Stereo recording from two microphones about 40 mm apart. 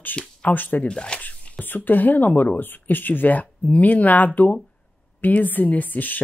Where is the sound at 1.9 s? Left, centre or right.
Left.